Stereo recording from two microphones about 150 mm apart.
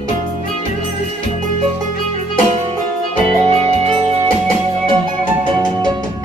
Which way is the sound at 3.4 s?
45° right (ahead or behind).